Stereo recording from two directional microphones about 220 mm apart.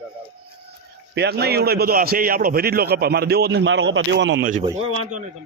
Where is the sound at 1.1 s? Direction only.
50° right (ahead or behind).